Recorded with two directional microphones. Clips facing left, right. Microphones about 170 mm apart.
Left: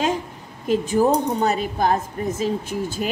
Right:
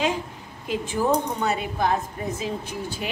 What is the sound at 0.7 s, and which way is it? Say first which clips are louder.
Speech: left 5 dB; 40° left (ahead or behind).